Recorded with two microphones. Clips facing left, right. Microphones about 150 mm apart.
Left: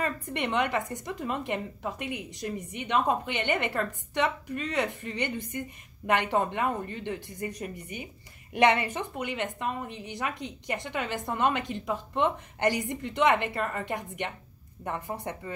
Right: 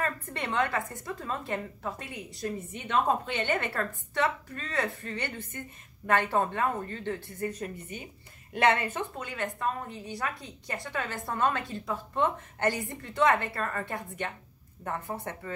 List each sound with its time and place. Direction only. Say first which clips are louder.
0.0 s a woman's voice: left 2 dB; 20° left (ahead or behind)